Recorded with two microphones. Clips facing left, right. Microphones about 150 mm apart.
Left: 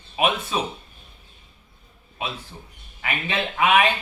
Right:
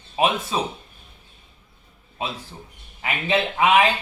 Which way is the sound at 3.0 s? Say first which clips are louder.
Right 4 dB; 30° right (ahead or behind).